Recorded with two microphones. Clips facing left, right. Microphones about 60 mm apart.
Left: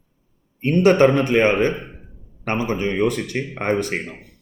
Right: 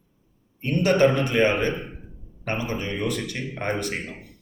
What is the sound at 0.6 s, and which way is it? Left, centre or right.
Speech, left.